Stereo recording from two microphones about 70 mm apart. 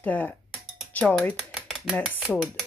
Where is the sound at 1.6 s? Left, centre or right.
Centre.